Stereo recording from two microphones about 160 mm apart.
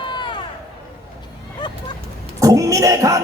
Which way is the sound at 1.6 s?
30° left (ahead or behind).